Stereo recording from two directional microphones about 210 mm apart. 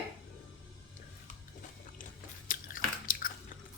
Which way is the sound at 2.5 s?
40° left (ahead or behind).